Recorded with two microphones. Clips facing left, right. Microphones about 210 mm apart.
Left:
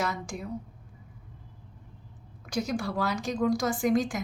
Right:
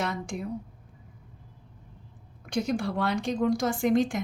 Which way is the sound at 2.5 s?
30° right (ahead or behind).